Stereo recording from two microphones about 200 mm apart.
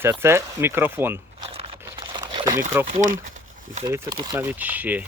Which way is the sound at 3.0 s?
45° right (ahead or behind).